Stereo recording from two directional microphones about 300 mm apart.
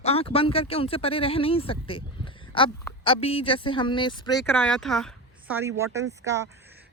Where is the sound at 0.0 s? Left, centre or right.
Centre.